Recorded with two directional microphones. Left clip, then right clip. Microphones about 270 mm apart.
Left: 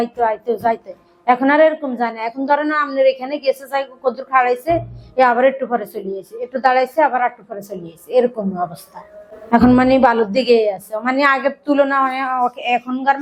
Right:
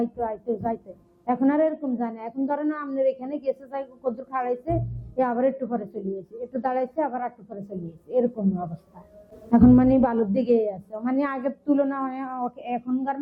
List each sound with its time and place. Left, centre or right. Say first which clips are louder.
0.0 s a woman's voice: left 10 dB; centre